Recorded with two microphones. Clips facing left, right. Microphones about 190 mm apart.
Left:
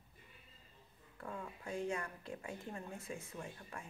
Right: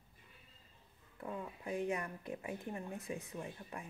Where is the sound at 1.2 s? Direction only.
15° right (ahead or behind).